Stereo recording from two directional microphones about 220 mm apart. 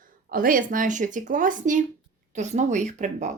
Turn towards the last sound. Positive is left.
turn(degrees=-35)  # may be behind; listen again after turning